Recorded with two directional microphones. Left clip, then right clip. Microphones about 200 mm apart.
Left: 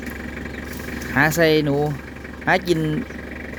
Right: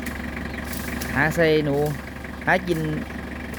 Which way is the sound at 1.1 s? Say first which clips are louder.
Left 3 dB; 25° left (ahead or behind).